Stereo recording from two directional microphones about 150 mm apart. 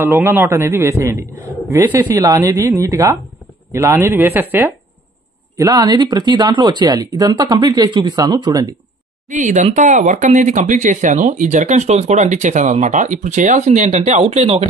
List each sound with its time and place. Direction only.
0.0 s a man's voice: 15° right (ahead or behind)
2.2 s a man's voice: 25° right (ahead or behind)
5.6 s speech: 25° right (ahead or behind)
9.3 s speech: 55° right (ahead or behind)